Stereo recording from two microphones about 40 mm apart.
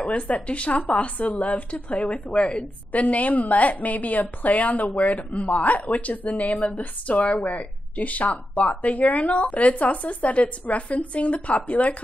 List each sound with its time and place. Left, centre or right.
0.0 s a woman's voice: left